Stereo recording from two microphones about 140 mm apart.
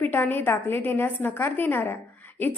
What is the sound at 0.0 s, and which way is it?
A woman's voice, 15° left (ahead or behind).